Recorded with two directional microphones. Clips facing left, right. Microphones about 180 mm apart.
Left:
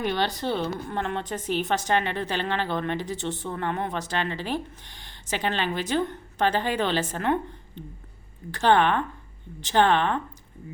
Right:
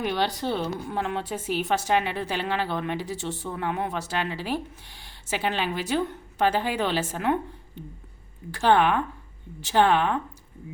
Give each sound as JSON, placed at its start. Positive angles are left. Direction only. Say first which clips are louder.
{"t": 0.0, "sound": "a woman's voice", "louder": "even", "side_deg": -5}
{"t": 8.5, "sound": "a woman's voice", "louder": "even", "side_deg": -5}